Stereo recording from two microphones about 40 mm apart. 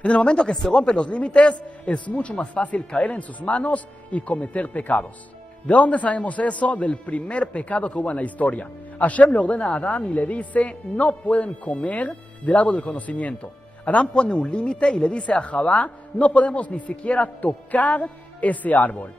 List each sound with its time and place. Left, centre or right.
0.0 s a man's voice: left
17.4 s a man's voice: left